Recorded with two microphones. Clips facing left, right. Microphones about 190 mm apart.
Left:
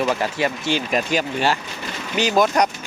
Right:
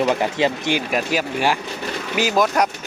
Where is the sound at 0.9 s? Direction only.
5° right (ahead or behind).